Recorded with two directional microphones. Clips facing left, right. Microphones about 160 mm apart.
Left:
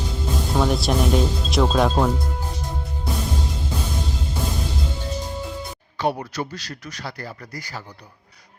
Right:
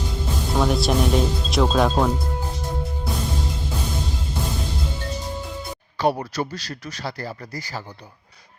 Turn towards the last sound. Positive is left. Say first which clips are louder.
# right 3 dB
turn(degrees=-35)  # may be behind; listen again after turning